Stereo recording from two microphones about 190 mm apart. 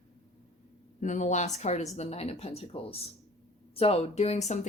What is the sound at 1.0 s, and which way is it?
Speech, 40° left (ahead or behind).